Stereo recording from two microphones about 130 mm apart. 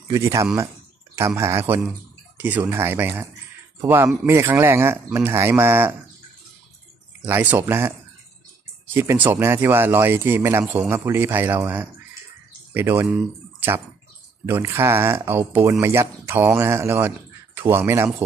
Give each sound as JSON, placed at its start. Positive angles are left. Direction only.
{"t": 0.1, "sound": "speech", "side_deg": -25}
{"t": 2.3, "sound": "a sound", "side_deg": -10}
{"t": 2.6, "sound": "speech", "side_deg": -20}
{"t": 7.2, "sound": "speech", "side_deg": -15}
{"t": 8.9, "sound": "speech", "side_deg": -15}
{"t": 13.6, "sound": "a sound", "side_deg": -20}
{"t": 14.4, "sound": "speech", "side_deg": -20}